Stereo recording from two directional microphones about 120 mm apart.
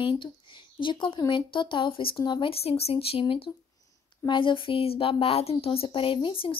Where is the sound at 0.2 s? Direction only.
40° left (ahead or behind).